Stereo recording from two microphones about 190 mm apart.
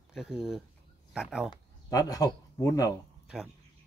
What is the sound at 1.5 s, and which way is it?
Speech, 20° left (ahead or behind).